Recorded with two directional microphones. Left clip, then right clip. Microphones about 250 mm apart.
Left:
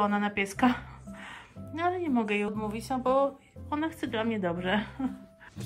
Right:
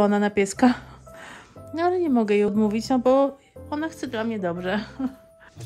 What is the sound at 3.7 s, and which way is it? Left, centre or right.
Speech, centre.